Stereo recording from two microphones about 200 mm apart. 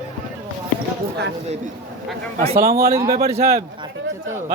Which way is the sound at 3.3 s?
30° right (ahead or behind).